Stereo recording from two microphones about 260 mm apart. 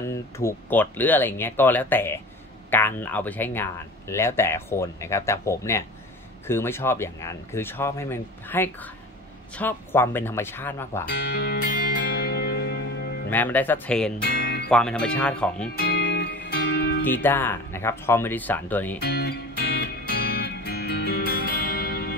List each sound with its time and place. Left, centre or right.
0.0 s speech: centre
11.1 s speech: left
12.1 s music: left
13.3 s speech: centre
14.2 s music: left
14.7 s speech: centre
15.7 s music: left
17.0 s speech: centre
18.9 s music: left